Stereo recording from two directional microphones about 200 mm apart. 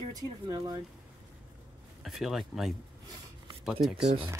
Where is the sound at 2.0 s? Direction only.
Centre (ahead or behind).